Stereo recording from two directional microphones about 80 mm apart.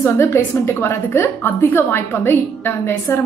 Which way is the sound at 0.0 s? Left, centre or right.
Left.